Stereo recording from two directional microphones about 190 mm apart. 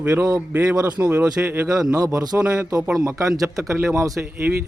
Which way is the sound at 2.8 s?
5° right (ahead or behind).